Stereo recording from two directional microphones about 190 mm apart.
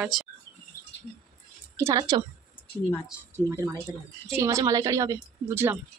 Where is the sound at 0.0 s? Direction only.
5° right (ahead or behind).